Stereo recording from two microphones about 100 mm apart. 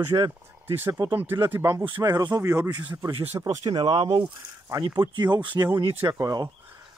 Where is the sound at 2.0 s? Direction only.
40° right (ahead or behind).